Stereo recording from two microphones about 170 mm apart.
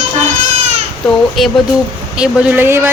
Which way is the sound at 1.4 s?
Centre (ahead or behind).